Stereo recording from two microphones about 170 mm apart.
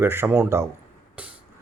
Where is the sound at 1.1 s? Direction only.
10° right (ahead or behind).